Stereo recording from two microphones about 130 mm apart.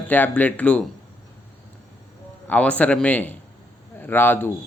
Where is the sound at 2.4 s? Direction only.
10° left (ahead or behind).